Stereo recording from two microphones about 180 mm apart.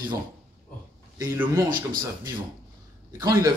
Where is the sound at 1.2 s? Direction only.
15° right (ahead or behind).